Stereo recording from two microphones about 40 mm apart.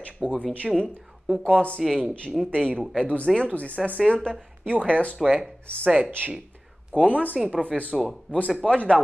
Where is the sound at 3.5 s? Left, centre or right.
Left.